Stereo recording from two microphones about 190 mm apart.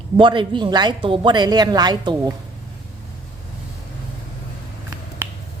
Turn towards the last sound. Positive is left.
turn(degrees=-15)  # may be behind; listen again after turning